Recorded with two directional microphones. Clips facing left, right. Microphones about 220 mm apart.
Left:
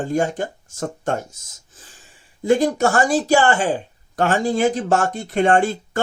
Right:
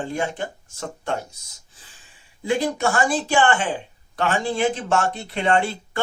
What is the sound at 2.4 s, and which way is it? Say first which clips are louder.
Speech: left 5 dB; 45° left (ahead or behind).